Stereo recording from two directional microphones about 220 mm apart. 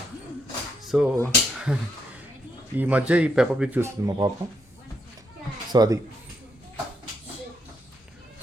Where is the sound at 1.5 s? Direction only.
5° right (ahead or behind).